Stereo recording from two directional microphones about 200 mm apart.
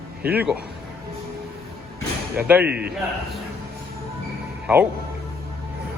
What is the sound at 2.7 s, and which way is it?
Speech, 55° right (ahead or behind).